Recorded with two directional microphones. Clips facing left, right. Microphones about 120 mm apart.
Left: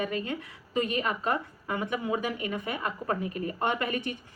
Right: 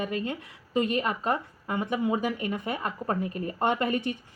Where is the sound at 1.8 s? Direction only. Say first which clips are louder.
Right 4 dB; 35° right (ahead or behind).